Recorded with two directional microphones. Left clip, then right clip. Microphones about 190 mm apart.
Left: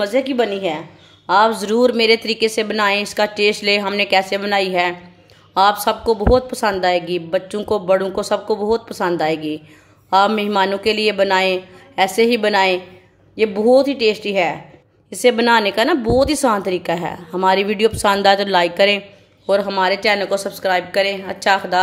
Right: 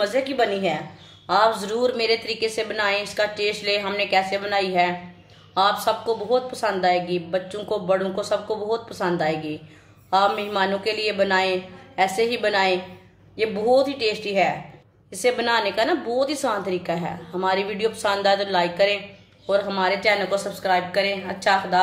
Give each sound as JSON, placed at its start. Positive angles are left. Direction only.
{"t": 0.0, "sound": "a woman's voice", "side_deg": 45}